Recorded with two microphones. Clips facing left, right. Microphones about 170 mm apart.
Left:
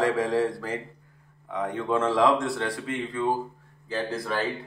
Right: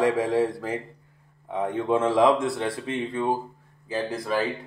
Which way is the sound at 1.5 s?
20° right (ahead or behind).